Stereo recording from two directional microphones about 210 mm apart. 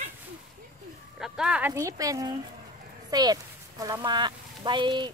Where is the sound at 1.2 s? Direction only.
Centre (ahead or behind).